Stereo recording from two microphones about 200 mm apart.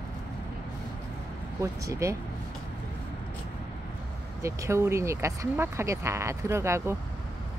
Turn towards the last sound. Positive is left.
turn(degrees=-15)  # may be behind; listen again after turning